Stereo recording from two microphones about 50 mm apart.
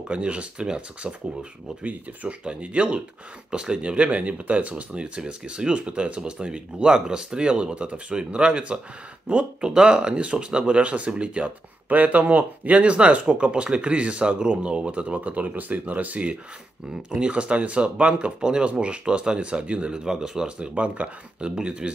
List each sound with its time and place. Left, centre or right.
0.1 s speech: right
9.6 s speech: centre
16.9 s speech: centre